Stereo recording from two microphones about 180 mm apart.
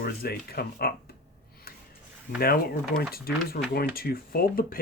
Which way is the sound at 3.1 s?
55° left (ahead or behind).